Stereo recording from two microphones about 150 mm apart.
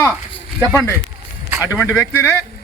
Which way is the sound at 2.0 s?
15° left (ahead or behind).